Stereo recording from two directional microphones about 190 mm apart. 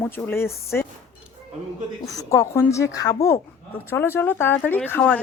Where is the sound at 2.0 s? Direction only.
15° left (ahead or behind).